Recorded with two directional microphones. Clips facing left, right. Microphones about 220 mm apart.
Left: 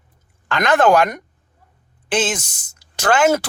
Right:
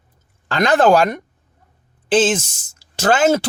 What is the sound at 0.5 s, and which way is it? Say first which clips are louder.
Speech: right 1 dB; 30° right (ahead or behind).